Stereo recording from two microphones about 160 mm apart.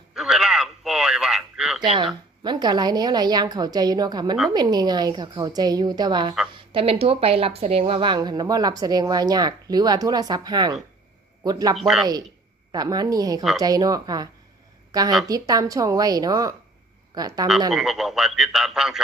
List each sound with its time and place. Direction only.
0.1 s radio: centre (ahead or behind)
1.8 s speech: 30° right (ahead or behind)
11.8 s speech: centre (ahead or behind)
12.7 s speech: 25° right (ahead or behind)
17.7 s speech: centre (ahead or behind)